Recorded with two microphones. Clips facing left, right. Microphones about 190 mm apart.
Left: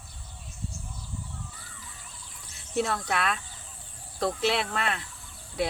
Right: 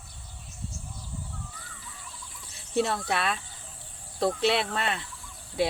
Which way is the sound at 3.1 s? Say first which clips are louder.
Even; centre (ahead or behind).